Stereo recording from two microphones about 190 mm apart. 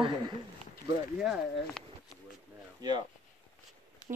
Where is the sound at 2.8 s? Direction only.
20° right (ahead or behind).